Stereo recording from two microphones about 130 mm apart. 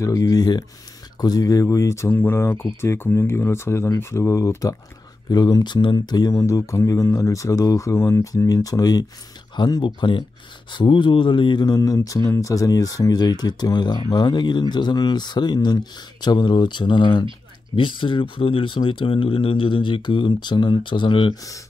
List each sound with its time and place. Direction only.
0.0 s speech: 25° left (ahead or behind)